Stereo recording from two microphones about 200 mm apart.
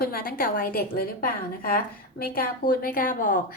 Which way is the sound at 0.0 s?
45° left (ahead or behind).